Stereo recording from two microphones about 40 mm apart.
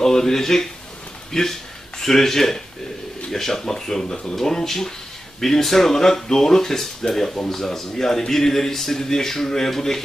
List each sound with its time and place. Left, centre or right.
0.0 s speech: centre